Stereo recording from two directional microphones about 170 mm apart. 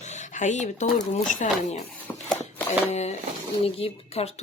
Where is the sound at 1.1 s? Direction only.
50° left (ahead or behind).